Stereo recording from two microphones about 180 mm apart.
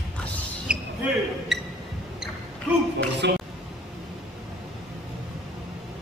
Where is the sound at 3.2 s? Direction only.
70° right (ahead or behind).